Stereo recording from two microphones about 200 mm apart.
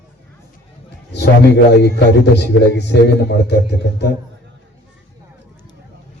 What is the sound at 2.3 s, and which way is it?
A man's voice, 60° left (ahead or behind).